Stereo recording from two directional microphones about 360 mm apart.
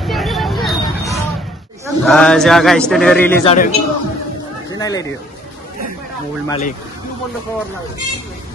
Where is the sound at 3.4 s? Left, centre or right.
Centre.